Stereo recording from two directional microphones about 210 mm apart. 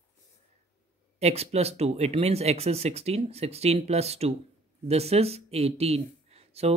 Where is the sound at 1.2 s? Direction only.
30° right (ahead or behind).